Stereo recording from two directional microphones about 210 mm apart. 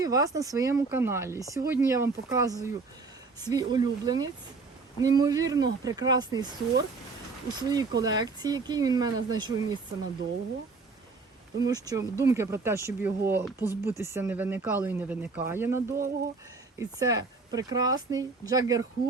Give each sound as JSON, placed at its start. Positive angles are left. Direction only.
{"t": 0.0, "sound": "speech", "side_deg": -15}
{"t": 11.6, "sound": "speech", "side_deg": -15}